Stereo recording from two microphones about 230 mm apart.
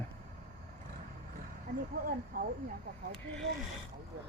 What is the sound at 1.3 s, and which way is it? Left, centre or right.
Speech, right.